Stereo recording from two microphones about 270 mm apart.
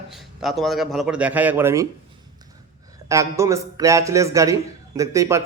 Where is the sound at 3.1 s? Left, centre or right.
Centre.